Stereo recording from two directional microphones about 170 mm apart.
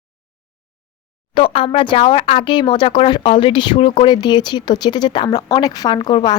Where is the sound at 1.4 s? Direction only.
30° left (ahead or behind).